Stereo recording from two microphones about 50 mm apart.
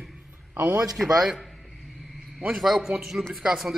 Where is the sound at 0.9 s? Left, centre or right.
Centre.